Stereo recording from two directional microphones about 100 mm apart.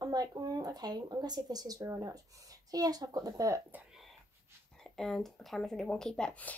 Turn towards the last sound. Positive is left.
turn(degrees=10)  # may be behind; listen again after turning